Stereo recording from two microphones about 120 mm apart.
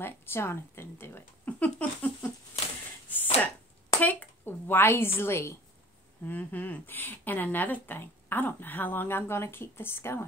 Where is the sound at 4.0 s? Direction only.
10° left (ahead or behind).